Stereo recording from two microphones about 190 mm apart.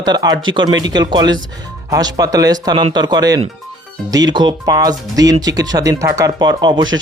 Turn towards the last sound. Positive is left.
turn(degrees=-25)  # may be behind; listen again after turning